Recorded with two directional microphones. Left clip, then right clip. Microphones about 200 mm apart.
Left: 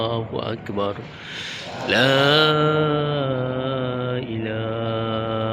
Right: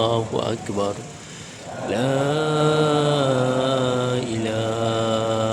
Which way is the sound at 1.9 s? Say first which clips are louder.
Left 6 dB; 5° right (ahead or behind).